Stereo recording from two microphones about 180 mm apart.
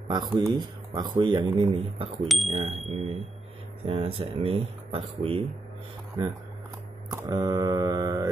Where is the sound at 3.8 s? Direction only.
30° right (ahead or behind).